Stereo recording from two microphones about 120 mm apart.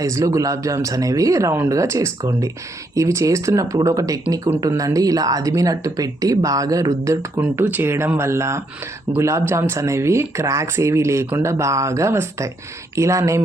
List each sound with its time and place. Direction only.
0.0 s speech: 25° right (ahead or behind)